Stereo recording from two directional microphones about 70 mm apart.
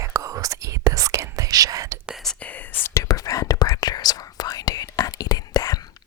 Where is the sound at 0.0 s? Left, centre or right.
Right.